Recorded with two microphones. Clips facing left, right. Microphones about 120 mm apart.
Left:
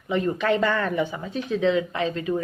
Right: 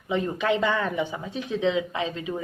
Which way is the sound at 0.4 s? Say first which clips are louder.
Even; 15° right (ahead or behind).